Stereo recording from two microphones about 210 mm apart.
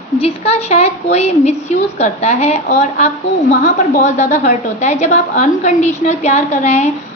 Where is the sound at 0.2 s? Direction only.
30° left (ahead or behind).